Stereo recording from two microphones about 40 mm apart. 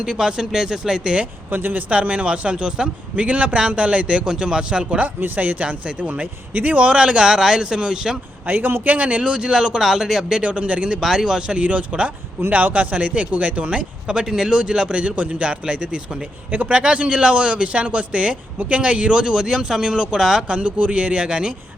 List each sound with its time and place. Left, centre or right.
0.0 s speech: right
1.5 s speech: right
1.9 s a man's voice: right
5.2 s speech: right
6.7 s a man's voice: right
8.4 s speech: right
9.5 s speech: centre
10.4 s a man's voice: right
11.0 s a man's voice: centre; by 12.1 s right
12.5 s speech: right
14.3 s a man's voice: centre; by 16.0 s right
16.5 s a man's voice: right
16.8 s a man's voice: right
20.5 s a man's voice: right